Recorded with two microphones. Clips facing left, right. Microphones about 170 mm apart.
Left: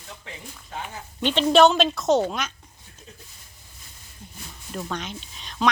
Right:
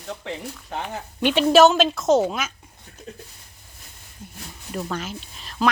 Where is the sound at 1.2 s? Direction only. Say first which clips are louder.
Right 2 dB; 10° right (ahead or behind).